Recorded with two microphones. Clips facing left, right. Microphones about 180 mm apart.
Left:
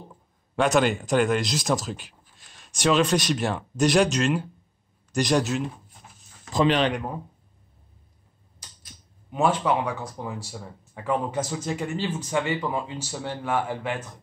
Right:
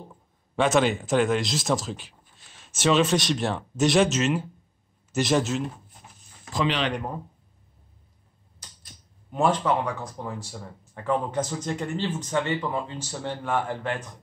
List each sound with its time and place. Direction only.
0.6 s speech: centre (ahead or behind)
6.6 s speech: 45° left (ahead or behind)
6.9 s speech: centre (ahead or behind)
9.3 s speech: 5° left (ahead or behind)